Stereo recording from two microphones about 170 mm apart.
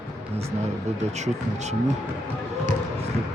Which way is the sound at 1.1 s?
40° right (ahead or behind).